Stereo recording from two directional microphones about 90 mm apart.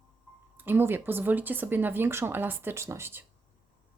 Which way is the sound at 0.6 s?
25° right (ahead or behind).